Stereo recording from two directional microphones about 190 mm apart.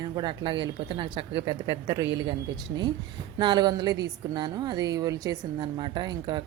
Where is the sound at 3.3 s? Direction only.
20° right (ahead or behind).